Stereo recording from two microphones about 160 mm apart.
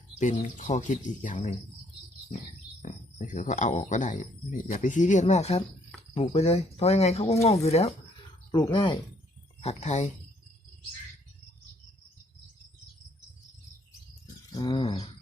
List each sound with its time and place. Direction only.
0.2 s speech: 50° left (ahead or behind)
2.8 s speech: 50° left (ahead or behind)
8.5 s speech: 30° left (ahead or behind)
9.6 s speech: 45° left (ahead or behind)
14.5 s bird: 30° left (ahead or behind)